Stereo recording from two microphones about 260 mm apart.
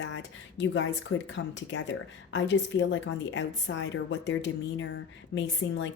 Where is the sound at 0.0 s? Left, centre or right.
Left.